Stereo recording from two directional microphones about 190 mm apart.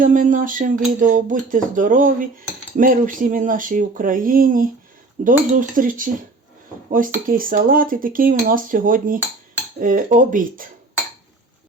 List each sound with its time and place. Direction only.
0.0 s speech: 45° right (ahead or behind)